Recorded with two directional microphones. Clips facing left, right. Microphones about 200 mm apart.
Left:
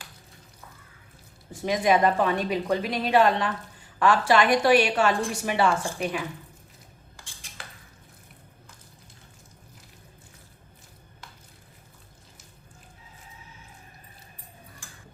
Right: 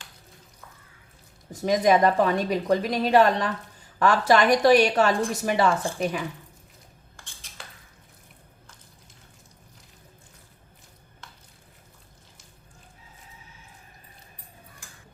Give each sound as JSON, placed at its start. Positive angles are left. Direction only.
{"t": 1.6, "sound": "a woman's voice", "side_deg": -40}